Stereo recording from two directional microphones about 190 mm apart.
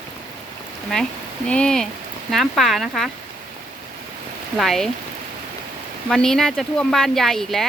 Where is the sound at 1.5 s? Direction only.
5° left (ahead or behind).